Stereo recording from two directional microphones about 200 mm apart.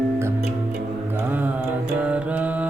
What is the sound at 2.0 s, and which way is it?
Mantra, 5° right (ahead or behind).